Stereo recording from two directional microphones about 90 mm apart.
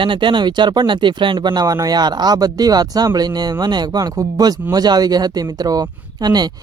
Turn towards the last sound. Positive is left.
turn(degrees=-50)  # may be behind; listen again after turning